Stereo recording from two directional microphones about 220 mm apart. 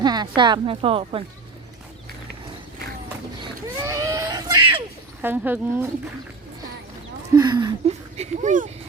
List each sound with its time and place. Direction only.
0.0 s speech: 20° right (ahead or behind)
3.4 s a sound: 15° right (ahead or behind)
5.2 s speech: 10° right (ahead or behind)
7.3 s speech: 15° right (ahead or behind)